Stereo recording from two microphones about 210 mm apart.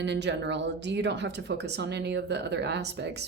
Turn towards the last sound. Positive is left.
turn(degrees=-55)  # may be behind; listen again after turning